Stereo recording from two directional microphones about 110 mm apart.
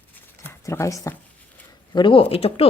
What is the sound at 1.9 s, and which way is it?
Speech, 50° left (ahead or behind).